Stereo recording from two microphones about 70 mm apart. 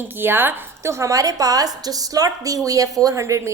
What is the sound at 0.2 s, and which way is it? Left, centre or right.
Speech, right.